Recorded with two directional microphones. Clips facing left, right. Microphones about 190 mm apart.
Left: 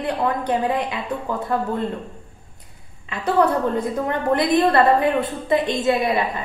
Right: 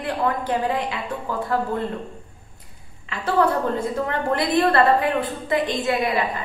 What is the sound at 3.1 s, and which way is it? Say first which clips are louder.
A woman's voice: left 2 dB; 20° left (ahead or behind).